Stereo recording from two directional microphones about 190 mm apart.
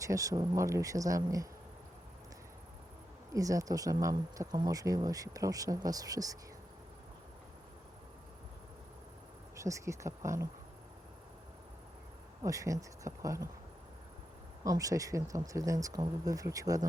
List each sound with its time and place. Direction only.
0.0 s speech: 15° right (ahead or behind)
3.3 s speech: 15° right (ahead or behind)
9.6 s speech: 15° right (ahead or behind)
12.4 s speech: 15° right (ahead or behind)
14.6 s speech: 20° right (ahead or behind)